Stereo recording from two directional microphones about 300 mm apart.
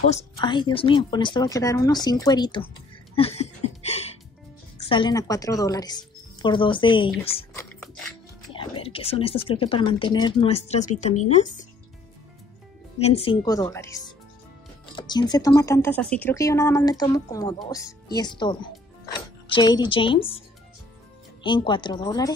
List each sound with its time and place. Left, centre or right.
0.1 s speech: centre
3.2 s a sound: centre
4.7 s a woman's voice: centre
7.5 s a sound: centre
8.5 s speech: centre
13.0 s speech: centre